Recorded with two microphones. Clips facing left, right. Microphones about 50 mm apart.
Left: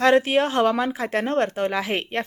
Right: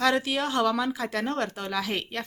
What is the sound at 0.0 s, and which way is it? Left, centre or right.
Speech, left.